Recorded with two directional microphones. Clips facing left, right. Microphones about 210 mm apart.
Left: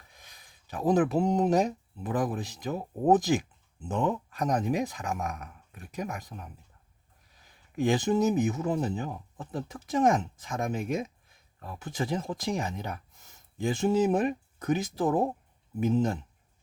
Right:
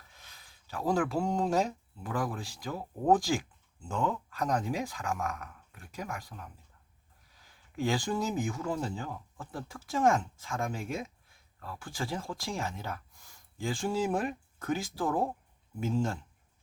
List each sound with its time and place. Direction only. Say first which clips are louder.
0.1 s speech: left 1 dB; 15° left (ahead or behind)